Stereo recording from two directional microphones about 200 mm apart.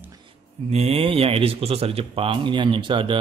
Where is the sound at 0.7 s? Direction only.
30° right (ahead or behind).